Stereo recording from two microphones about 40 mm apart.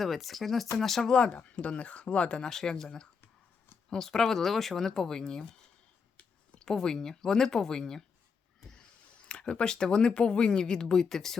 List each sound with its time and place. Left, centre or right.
0.0 s speech: centre
1.1 s speech: left
6.1 s a sound: left
6.7 s speech: centre
8.7 s speech: left; by 11.3 s centre